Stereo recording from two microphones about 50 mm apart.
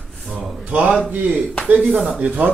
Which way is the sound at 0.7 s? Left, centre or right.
Right.